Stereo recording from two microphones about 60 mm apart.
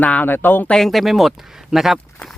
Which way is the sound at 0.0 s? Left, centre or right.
Left.